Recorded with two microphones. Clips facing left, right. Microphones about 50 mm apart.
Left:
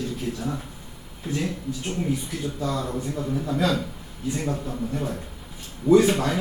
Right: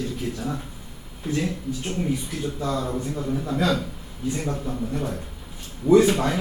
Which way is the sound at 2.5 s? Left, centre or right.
Right.